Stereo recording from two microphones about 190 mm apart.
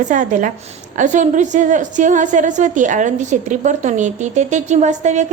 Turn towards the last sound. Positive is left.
turn(degrees=-40)  # may be behind; listen again after turning